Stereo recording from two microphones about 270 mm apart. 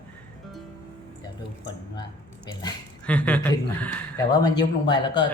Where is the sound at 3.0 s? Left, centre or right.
Centre.